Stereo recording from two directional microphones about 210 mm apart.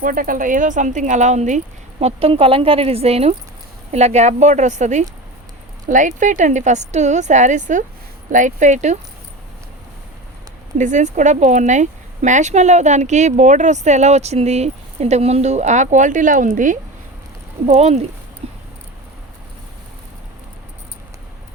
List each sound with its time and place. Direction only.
0.0 s speech: 40° right (ahead or behind)
10.8 s speech: 35° right (ahead or behind)
18.4 s a sound: 30° right (ahead or behind)